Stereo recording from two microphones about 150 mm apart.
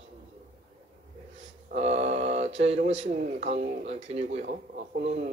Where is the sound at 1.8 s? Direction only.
45° right (ahead or behind).